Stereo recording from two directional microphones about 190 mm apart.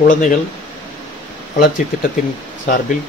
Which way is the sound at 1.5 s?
50° left (ahead or behind).